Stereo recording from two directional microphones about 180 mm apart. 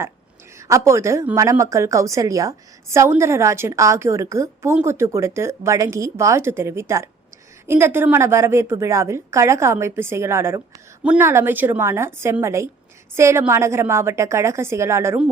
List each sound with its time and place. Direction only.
0.7 s a woman's voice: 15° right (ahead or behind)